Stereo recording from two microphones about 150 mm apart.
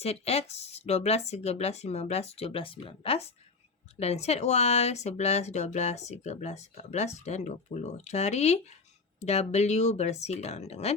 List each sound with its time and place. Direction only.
0.0 s speech: 45° left (ahead or behind)